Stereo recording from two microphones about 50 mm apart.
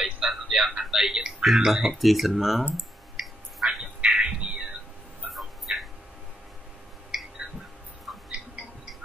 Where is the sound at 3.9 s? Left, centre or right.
Right.